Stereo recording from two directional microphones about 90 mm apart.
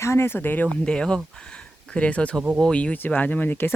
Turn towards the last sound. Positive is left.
turn(degrees=20)  # may be behind; listen again after turning